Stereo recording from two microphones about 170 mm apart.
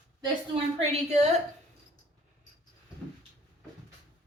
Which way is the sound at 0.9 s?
40° right (ahead or behind).